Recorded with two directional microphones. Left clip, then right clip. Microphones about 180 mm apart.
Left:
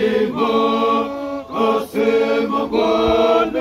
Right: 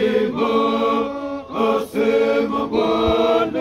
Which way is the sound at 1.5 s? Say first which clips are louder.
Left 1 dB; 25° right (ahead or behind).